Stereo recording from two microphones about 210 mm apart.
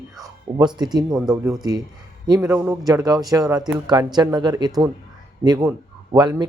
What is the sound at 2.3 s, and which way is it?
A man's voice, 10° right (ahead or behind).